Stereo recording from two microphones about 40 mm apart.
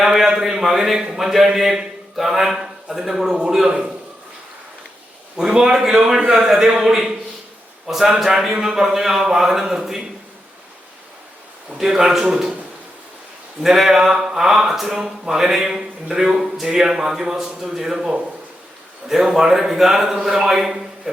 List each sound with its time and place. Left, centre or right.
0.0 s a man's voice: centre
3.7 s a man's voice: right
5.4 s a man's voice: centre
7.9 s a man's voice: centre
11.8 s a man's voice: centre
13.6 s a man's voice: centre